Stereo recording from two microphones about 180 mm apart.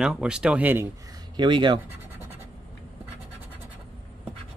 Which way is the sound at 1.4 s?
25° right (ahead or behind).